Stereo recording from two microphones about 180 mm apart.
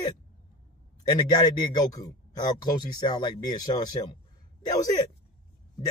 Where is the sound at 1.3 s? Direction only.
25° left (ahead or behind).